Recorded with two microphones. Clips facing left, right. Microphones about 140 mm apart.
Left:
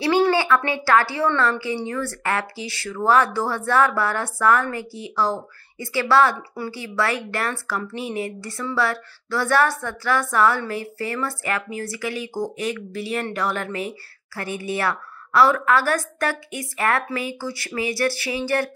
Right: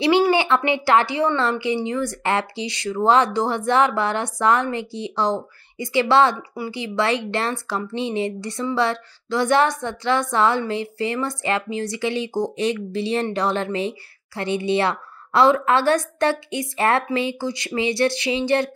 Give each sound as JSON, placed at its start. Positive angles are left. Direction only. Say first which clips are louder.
{"t": 0.0, "sound": "a woman's voice", "louder": "right 1 dB", "side_deg": -15}